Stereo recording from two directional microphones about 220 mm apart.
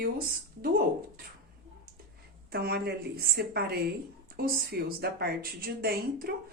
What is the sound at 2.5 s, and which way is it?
Speech, 45° right (ahead or behind).